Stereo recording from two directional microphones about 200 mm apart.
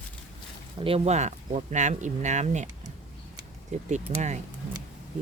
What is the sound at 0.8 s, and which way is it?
Speech, 30° right (ahead or behind).